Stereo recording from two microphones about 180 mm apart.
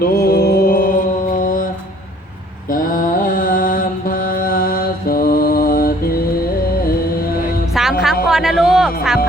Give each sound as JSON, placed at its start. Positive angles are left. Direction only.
{"t": 0.0, "sound": "mantra", "side_deg": 55}
{"t": 2.6, "sound": "mantra", "side_deg": 50}
{"t": 6.8, "sound": "music", "side_deg": 55}
{"t": 7.7, "sound": "music", "side_deg": 0}
{"t": 8.3, "sound": "a sound", "side_deg": 0}